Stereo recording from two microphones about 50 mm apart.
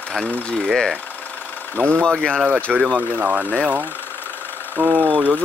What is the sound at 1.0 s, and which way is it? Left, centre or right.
Engine, left.